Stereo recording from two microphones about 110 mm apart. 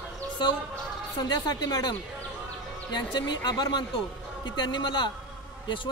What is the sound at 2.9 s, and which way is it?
Speech, 40° left (ahead or behind).